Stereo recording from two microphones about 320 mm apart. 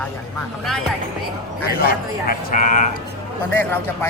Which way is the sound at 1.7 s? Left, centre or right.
Left.